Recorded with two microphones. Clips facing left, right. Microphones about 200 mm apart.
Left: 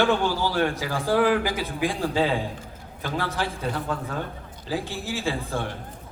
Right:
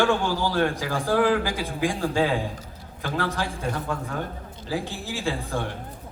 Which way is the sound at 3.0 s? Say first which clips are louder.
Right 1 dB; 15° left (ahead or behind).